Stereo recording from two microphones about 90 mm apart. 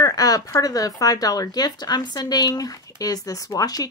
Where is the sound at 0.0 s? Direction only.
45° left (ahead or behind).